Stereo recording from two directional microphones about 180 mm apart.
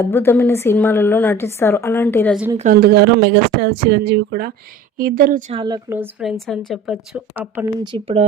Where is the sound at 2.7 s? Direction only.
60° right (ahead or behind).